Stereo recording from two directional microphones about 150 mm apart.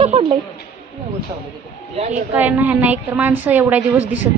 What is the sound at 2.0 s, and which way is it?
Speech, 50° right (ahead or behind).